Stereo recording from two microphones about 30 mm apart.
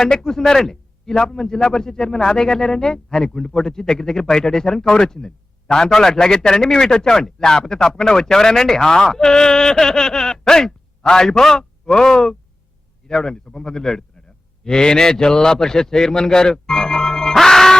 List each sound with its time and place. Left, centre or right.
0.0 s a man's voice: left
17.3 s music: centre